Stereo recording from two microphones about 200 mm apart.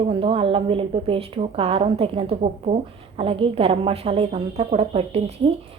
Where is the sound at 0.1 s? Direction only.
25° right (ahead or behind).